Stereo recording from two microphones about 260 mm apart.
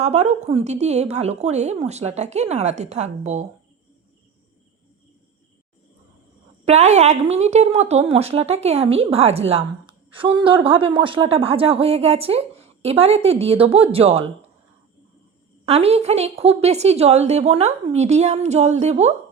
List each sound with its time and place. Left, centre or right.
0.0 s speech: right
6.7 s speech: right
15.6 s speech: right